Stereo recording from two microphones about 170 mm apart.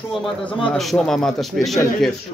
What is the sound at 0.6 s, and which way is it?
A man's voice, centre (ahead or behind).